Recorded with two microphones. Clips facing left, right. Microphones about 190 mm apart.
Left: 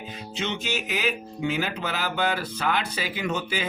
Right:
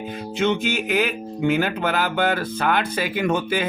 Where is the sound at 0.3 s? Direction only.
55° right (ahead or behind).